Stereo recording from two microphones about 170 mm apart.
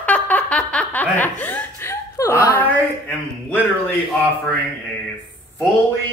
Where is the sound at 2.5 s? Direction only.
10° left (ahead or behind).